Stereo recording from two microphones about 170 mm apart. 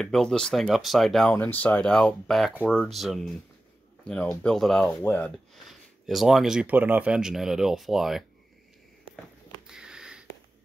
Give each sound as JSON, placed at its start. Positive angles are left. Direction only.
{"t": 0.0, "sound": "speech", "side_deg": 0}
{"t": 9.7, "sound": "sniff", "side_deg": -5}